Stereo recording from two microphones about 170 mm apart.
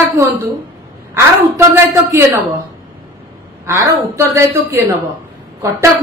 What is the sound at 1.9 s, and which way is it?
Speech, 20° right (ahead or behind).